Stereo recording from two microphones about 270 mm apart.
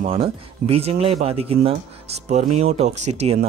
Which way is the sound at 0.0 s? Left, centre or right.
Right.